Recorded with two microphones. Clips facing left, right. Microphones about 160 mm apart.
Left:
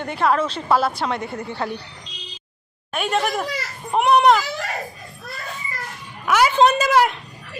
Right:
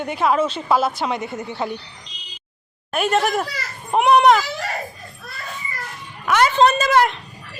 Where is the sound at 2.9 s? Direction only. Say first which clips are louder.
Right 3 dB; centre (ahead or behind).